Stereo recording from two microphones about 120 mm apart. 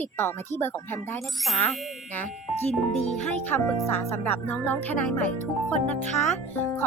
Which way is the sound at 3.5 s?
15° left (ahead or behind).